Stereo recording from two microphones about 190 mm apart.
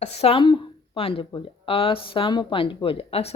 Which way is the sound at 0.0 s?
35° left (ahead or behind).